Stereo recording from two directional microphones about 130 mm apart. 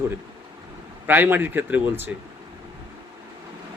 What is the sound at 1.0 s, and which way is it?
A man's voice, 15° right (ahead or behind).